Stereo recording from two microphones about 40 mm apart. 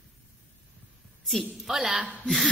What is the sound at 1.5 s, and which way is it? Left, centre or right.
Speech, centre.